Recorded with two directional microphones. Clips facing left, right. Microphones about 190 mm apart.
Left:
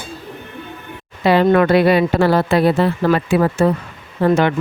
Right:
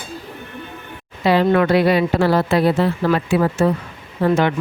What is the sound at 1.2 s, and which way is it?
Speech, 55° left (ahead or behind).